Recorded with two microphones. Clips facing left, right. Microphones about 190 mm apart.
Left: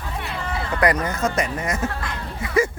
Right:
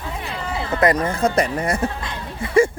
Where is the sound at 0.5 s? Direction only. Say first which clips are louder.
Right 3 dB; 25° right (ahead or behind).